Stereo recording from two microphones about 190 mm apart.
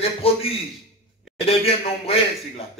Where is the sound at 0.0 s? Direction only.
30° left (ahead or behind).